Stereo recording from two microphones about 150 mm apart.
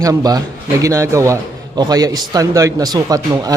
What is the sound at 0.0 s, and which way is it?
A man's voice, 25° right (ahead or behind).